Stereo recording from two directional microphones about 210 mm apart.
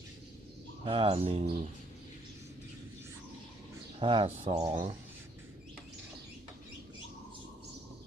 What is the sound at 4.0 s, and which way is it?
Speech, 25° right (ahead or behind).